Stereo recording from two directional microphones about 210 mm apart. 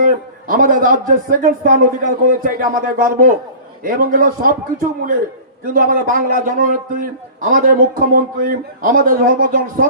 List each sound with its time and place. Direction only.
0.0 s a man's voice: 40° right (ahead or behind)